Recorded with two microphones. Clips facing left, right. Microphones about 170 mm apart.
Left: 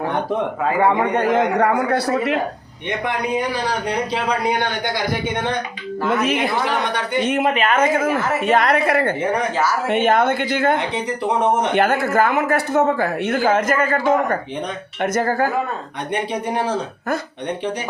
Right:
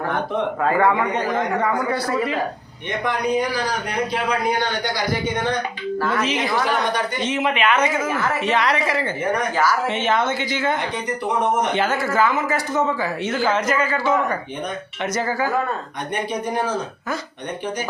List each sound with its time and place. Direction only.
1.1 s speech: 70° left (ahead or behind)
6.0 s speech: 20° left (ahead or behind)
6.2 s speech: 55° left (ahead or behind)
7.5 s a man's voice: 45° left (ahead or behind)